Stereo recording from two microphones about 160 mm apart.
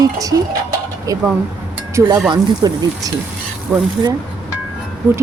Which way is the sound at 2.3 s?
25° right (ahead or behind).